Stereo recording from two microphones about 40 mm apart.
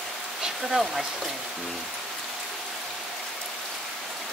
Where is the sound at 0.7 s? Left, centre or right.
Centre.